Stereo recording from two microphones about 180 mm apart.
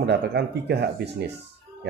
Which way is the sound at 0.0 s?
70° right (ahead or behind).